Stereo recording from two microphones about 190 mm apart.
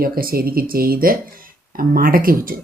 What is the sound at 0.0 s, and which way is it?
Speech, 50° right (ahead or behind).